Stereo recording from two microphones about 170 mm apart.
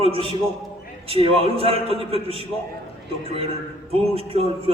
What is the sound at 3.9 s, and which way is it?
Speech, 35° right (ahead or behind).